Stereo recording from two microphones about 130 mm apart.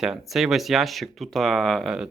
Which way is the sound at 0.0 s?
5° right (ahead or behind).